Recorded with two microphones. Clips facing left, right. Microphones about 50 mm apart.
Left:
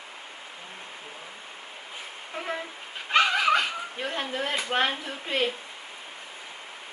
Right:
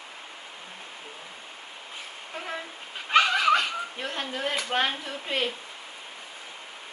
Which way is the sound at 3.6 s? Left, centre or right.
Centre.